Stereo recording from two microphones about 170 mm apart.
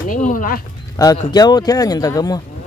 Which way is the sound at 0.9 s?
20° left (ahead or behind).